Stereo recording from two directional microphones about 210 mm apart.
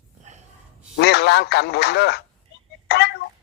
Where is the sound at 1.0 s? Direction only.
55° left (ahead or behind).